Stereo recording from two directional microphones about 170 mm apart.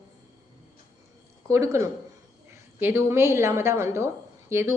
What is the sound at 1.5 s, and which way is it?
A woman's voice, 15° right (ahead or behind).